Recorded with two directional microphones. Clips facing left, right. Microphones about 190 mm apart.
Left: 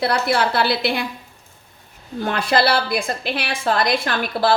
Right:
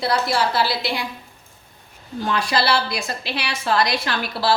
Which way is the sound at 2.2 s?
55° left (ahead or behind).